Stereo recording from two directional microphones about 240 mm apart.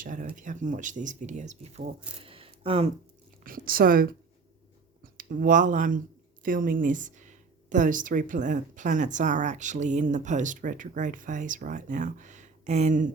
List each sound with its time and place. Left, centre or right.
0.0 s a woman's voice: right
3.4 s a woman's voice: right